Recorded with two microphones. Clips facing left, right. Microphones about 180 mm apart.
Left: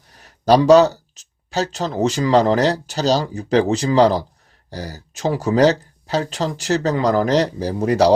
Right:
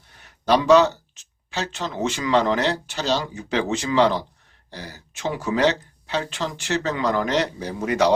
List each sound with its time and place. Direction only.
0.2 s speech: 35° left (ahead or behind)